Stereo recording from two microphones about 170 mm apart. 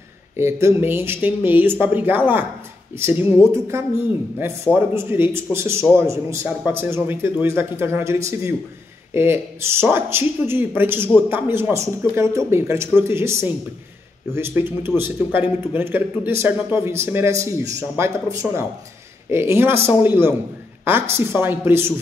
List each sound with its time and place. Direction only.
0.4 s speech: 15° right (ahead or behind)